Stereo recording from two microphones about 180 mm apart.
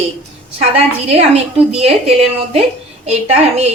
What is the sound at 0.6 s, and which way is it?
A woman's voice, 35° right (ahead or behind).